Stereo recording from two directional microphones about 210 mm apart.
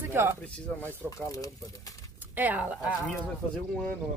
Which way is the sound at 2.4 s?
10° right (ahead or behind).